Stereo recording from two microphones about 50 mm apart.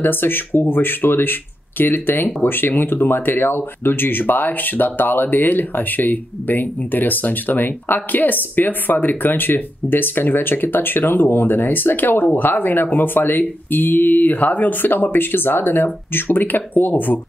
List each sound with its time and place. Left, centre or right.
0.0 s speech: left